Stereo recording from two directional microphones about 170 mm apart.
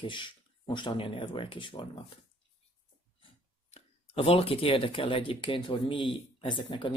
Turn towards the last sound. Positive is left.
turn(degrees=30)  # may be behind; listen again after turning